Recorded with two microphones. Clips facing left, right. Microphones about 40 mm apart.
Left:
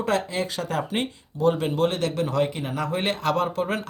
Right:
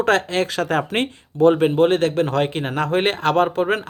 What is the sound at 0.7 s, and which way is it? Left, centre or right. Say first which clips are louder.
Speech: right 4 dB; right.